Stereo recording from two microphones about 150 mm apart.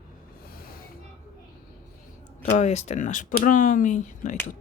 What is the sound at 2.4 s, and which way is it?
A woman's voice, 50° left (ahead or behind).